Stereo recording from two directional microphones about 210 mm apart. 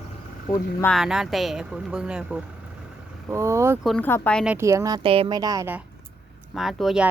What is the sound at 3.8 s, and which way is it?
Speech, 5° left (ahead or behind).